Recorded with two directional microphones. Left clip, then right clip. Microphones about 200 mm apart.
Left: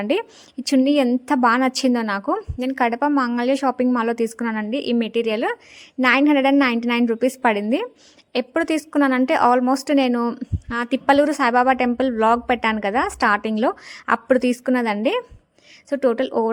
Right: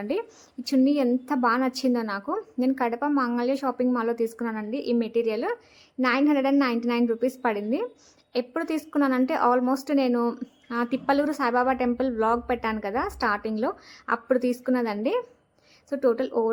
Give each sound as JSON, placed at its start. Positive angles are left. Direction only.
{"t": 0.0, "sound": "a woman's voice", "side_deg": 40}